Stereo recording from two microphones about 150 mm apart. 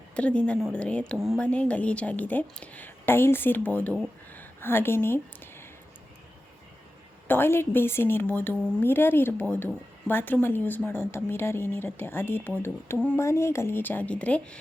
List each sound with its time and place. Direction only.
0.2 s a woman's voice: 10° left (ahead or behind)
4.4 s a sound: 15° left (ahead or behind)
7.3 s a woman's voice: 15° left (ahead or behind)